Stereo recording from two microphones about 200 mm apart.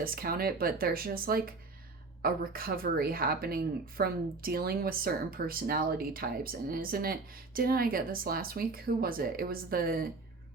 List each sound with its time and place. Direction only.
0.0 s speech: 45° right (ahead or behind)